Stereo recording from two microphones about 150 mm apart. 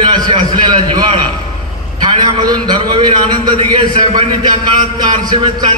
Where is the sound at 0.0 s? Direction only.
30° right (ahead or behind).